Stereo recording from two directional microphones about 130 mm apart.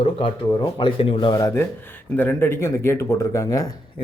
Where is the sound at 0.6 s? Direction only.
40° left (ahead or behind).